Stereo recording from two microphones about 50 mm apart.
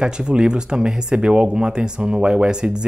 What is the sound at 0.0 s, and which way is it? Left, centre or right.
Speech, centre.